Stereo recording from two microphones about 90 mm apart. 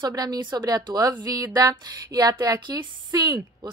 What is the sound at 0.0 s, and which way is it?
A woman's voice, 45° right (ahead or behind).